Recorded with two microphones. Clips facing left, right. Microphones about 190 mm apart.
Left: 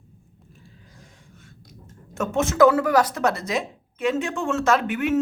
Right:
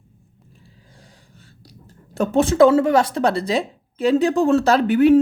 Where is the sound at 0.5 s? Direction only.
30° right (ahead or behind).